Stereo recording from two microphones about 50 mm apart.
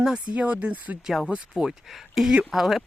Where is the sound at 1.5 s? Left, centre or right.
Centre.